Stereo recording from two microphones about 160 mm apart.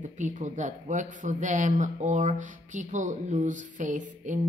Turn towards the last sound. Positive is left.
turn(degrees=-55)  # may be behind; listen again after turning